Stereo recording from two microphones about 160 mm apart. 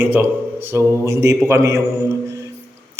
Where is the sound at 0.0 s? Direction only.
10° right (ahead or behind).